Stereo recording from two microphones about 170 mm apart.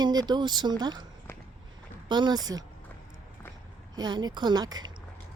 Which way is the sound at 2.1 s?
25° right (ahead or behind).